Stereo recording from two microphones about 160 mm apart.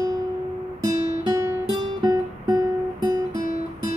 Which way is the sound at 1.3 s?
20° right (ahead or behind).